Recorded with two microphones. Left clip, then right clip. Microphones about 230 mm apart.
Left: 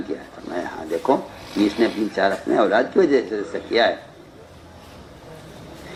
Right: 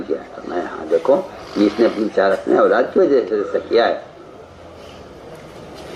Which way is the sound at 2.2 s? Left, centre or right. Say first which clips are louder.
Right 5 dB; left.